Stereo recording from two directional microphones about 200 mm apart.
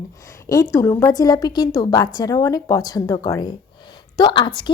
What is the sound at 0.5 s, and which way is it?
A woman's voice, 15° left (ahead or behind).